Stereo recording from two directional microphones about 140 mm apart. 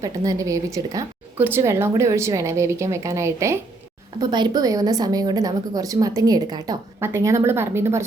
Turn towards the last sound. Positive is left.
turn(degrees=-15)  # may be behind; listen again after turning